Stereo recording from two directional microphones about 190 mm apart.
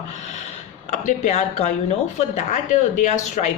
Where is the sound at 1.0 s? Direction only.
35° left (ahead or behind).